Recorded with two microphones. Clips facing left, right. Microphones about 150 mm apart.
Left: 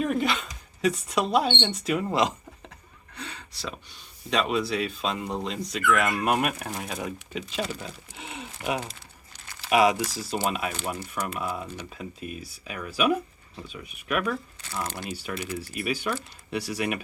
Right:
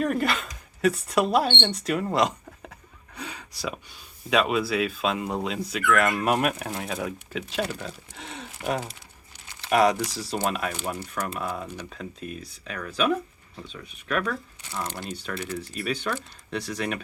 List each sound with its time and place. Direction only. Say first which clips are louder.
0.0 s speech: right 1 dB; centre (ahead or behind)
3.2 s a sound: right 3 dB; 10° right (ahead or behind)
4.3 s speech: right 2 dB; 5° right (ahead or behind)